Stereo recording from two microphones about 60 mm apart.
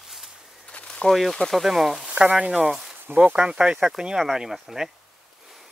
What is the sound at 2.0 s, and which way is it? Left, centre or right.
Speech, centre.